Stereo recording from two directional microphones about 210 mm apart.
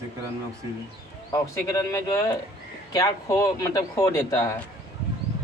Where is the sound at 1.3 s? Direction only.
15° left (ahead or behind).